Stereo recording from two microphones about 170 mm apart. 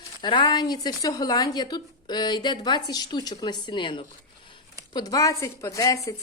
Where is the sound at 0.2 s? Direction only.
30° left (ahead or behind).